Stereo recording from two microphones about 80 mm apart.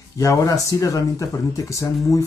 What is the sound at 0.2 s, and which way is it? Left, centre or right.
Speech, left.